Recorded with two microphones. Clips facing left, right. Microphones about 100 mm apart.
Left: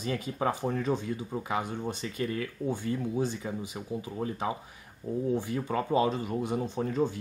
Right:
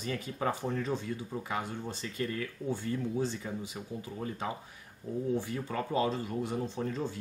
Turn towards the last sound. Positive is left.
turn(degrees=15)  # may be behind; listen again after turning